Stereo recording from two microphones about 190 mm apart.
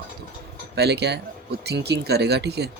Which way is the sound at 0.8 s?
60° right (ahead or behind).